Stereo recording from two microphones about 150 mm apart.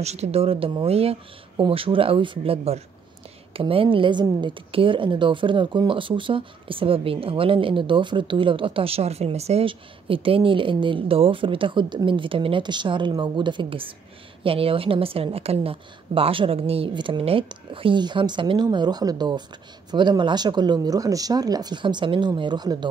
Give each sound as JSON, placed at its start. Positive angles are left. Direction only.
{"t": 0.0, "sound": "a woman's voice", "side_deg": -45}